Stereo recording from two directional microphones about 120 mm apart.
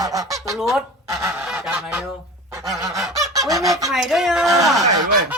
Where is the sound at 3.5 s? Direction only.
30° right (ahead or behind).